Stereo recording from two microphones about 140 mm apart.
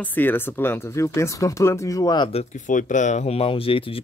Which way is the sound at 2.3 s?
65° left (ahead or behind).